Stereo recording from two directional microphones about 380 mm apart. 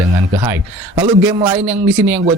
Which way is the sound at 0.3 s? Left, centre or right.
Centre.